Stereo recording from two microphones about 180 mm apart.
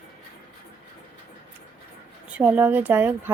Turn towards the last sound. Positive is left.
turn(degrees=-10)  # may be behind; listen again after turning